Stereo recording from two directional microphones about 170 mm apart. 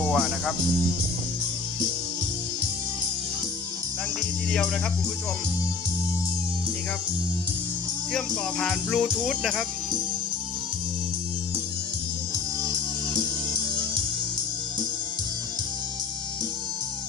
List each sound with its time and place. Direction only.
0.0 s speech: centre (ahead or behind)
8.1 s speech: centre (ahead or behind)
12.6 s music: 25° right (ahead or behind)